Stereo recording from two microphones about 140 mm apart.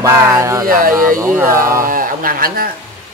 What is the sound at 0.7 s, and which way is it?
Speech, 80° right.